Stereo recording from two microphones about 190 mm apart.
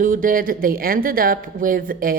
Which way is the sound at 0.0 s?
45° right (ahead or behind).